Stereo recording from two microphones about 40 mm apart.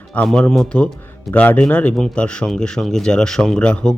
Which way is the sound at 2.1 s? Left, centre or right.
Left.